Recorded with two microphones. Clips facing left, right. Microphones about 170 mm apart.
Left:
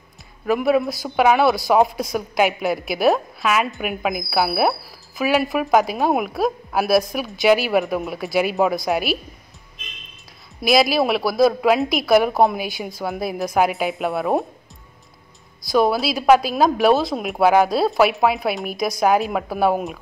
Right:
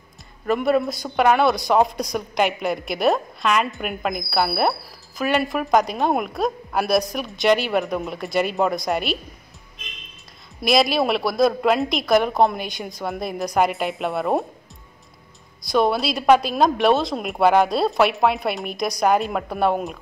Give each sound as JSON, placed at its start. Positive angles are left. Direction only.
{"t": 0.5, "sound": "speech", "side_deg": 0}
{"t": 10.6, "sound": "speech", "side_deg": 0}
{"t": 15.6, "sound": "speech", "side_deg": 0}